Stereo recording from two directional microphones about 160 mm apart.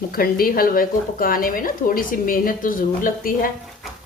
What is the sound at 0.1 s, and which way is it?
Speech, 65° left (ahead or behind).